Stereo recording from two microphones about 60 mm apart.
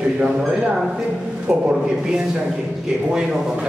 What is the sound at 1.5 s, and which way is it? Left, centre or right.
A man's voice, centre.